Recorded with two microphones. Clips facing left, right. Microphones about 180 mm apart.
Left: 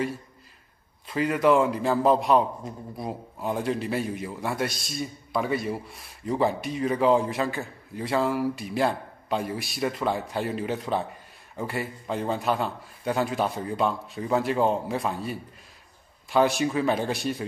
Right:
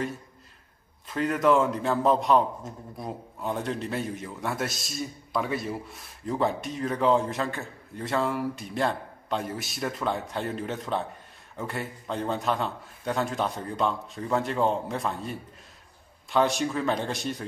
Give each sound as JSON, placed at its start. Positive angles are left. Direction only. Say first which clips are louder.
{"t": 1.0, "sound": "a man's voice", "louder": "left 2 dB", "side_deg": 0}